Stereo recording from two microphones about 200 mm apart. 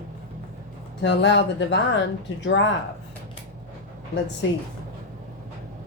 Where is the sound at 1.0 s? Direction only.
60° left (ahead or behind).